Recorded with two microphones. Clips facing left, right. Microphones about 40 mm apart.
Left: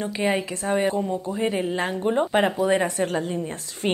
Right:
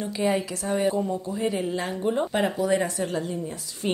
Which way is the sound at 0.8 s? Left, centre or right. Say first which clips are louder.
Left 1 dB; centre.